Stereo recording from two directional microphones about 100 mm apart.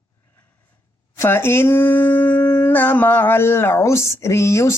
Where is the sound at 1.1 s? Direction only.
25° left (ahead or behind).